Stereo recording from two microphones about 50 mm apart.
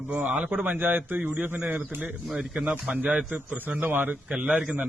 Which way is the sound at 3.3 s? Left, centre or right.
Right.